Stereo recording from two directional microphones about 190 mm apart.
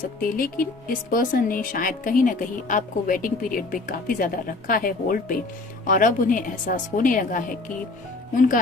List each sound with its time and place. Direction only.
0.2 s a woman's voice: 45° left (ahead or behind)